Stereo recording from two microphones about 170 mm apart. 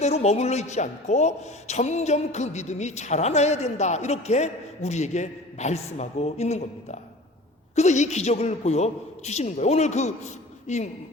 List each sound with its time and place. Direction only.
0.0 s a man's voice: 40° left (ahead or behind)